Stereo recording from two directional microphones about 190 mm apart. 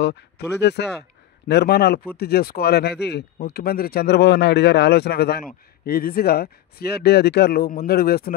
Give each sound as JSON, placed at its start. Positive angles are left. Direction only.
{"t": 0.0, "sound": "speech", "side_deg": 65}